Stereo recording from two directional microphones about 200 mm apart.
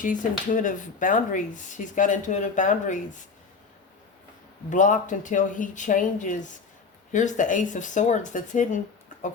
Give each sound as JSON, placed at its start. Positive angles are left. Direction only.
{"t": 0.0, "sound": "speech", "side_deg": 40}
{"t": 4.7, "sound": "speech", "side_deg": 40}